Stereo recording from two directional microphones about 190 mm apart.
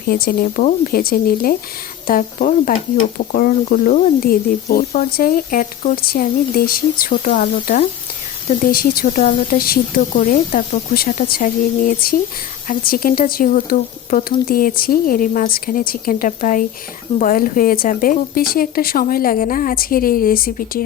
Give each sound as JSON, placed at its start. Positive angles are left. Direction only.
{"t": 0.1, "sound": "speech", "side_deg": 50}
{"t": 7.3, "sound": "speech", "side_deg": 40}
{"t": 8.6, "sound": "speech", "side_deg": 50}